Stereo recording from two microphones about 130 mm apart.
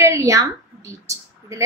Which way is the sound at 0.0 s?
25° right (ahead or behind).